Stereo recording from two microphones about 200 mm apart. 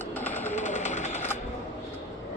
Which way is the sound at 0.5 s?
35° left (ahead or behind).